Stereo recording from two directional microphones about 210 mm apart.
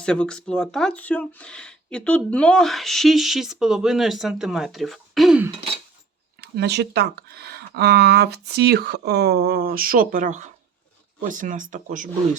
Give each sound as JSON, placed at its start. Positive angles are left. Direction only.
{"t": 0.0, "sound": "speech", "side_deg": 5}
{"t": 6.4, "sound": "speech", "side_deg": -55}